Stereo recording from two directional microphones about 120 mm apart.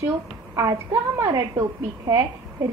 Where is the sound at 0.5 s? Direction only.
25° right (ahead or behind).